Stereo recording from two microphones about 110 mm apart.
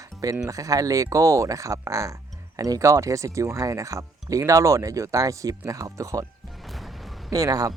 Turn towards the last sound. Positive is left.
turn(degrees=-35)  # may be behind; listen again after turning